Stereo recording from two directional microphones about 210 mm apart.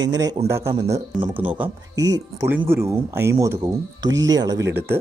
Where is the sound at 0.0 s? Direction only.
15° right (ahead or behind).